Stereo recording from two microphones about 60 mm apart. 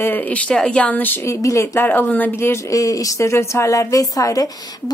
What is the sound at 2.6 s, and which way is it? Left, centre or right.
Speech, left.